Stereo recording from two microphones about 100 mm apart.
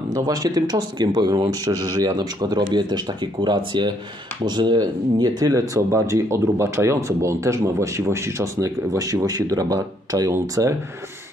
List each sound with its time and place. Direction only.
0.1 s speech: 40° right (ahead or behind)